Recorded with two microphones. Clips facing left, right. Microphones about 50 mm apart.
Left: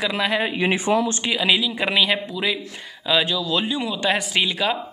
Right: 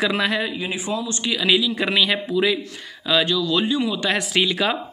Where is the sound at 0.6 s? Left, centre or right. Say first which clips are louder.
Left 6 dB; left.